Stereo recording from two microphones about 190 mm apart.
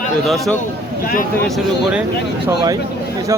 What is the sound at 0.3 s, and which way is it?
Speech, centre (ahead or behind).